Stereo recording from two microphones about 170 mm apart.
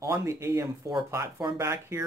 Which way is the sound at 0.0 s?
20° right (ahead or behind).